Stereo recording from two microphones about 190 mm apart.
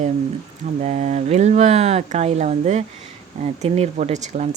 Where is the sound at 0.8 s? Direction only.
40° right (ahead or behind).